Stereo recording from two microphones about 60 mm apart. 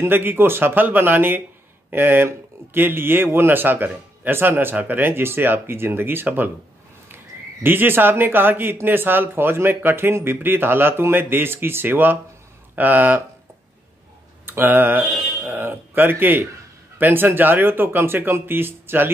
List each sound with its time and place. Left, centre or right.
0.0 s speech: right
7.6 s speech: right
14.4 s speech: right